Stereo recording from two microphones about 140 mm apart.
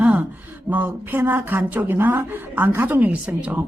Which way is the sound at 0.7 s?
15° right (ahead or behind).